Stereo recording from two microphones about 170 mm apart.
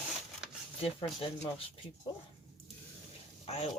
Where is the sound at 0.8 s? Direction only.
35° left (ahead or behind).